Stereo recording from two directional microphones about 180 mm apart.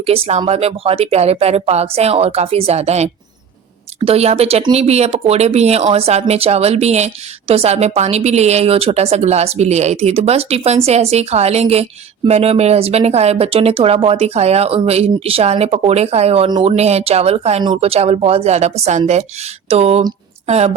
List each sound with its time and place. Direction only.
0.0 s speech: 35° right (ahead or behind)